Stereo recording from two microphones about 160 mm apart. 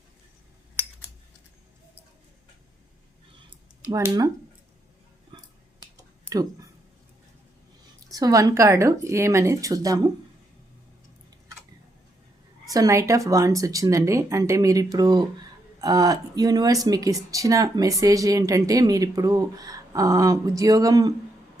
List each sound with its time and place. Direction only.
3.8 s speech: 20° right (ahead or behind)
6.3 s speech: 20° right (ahead or behind)
7.9 s speech: 25° right (ahead or behind)
12.7 s speech: 20° right (ahead or behind)